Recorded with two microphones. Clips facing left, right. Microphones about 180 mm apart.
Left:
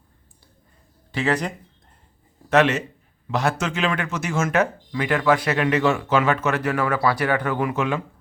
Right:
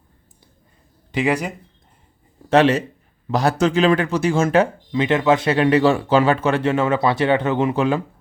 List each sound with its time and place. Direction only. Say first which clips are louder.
1.1 s speech: right 3 dB; 15° right (ahead or behind)
2.5 s speech: right 3 dB; 30° right (ahead or behind)